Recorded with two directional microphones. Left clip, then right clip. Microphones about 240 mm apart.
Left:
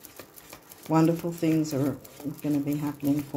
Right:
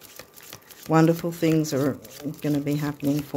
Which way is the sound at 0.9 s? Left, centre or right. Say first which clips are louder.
Right 4 dB; right.